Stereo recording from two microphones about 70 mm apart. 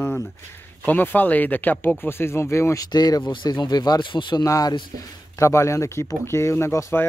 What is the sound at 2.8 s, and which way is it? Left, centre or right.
Speech, left.